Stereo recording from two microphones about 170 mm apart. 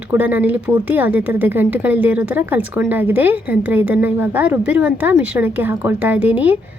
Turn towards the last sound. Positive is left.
turn(degrees=-10)  # may be behind; listen again after turning